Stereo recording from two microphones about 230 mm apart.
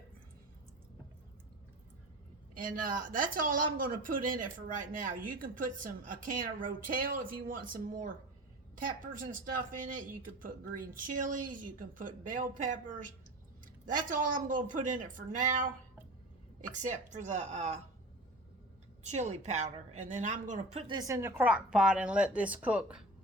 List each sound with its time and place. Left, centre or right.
2.6 s speech: right
19.0 s speech: right
20.7 s a woman's voice: centre